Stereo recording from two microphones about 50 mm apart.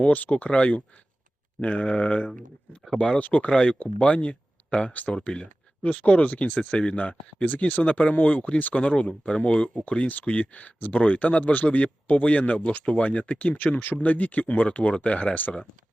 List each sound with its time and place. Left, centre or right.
0.0 s speech: left
3.5 s speech: centre